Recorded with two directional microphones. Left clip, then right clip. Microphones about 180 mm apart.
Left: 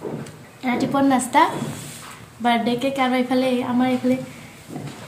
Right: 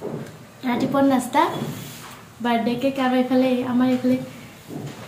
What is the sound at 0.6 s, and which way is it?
Speech, 10° left (ahead or behind).